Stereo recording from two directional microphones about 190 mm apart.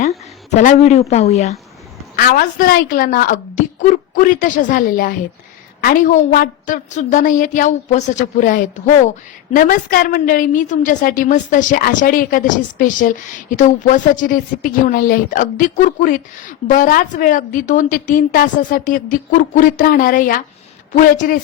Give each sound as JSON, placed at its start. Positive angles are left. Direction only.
{"t": 0.0, "sound": "speech", "side_deg": 40}
{"t": 2.1, "sound": "speech", "side_deg": 45}